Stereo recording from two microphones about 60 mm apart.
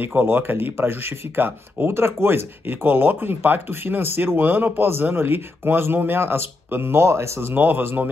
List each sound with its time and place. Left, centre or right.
0.0 s speech: right
1.9 s speech: right
7.5 s speech: right